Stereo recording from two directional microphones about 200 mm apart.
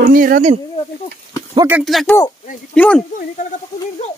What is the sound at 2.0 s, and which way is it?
Speech, 15° left (ahead or behind).